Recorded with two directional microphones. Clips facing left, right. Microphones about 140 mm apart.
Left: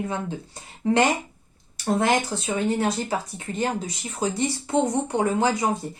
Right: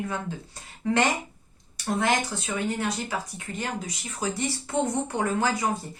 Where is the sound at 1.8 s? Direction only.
30° left (ahead or behind).